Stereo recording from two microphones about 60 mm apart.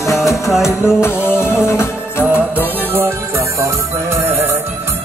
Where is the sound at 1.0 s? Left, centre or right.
Left.